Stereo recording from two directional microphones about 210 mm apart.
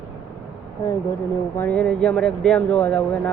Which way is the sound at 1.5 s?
5° left (ahead or behind).